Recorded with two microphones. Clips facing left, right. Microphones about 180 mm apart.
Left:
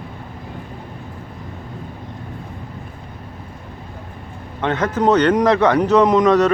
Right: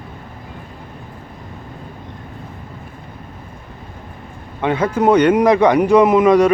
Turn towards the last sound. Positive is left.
turn(degrees=-10)  # may be behind; listen again after turning